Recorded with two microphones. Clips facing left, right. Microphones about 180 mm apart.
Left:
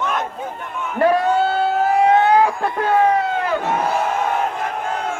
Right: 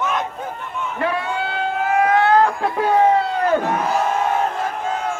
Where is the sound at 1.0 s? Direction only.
40° left (ahead or behind).